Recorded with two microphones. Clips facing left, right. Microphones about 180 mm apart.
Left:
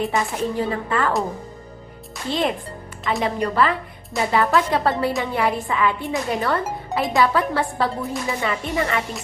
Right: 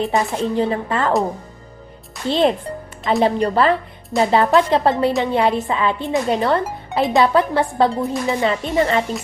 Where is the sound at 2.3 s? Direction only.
30° right (ahead or behind).